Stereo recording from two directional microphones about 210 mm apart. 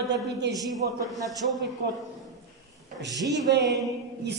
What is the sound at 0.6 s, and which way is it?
Speech, 15° right (ahead or behind).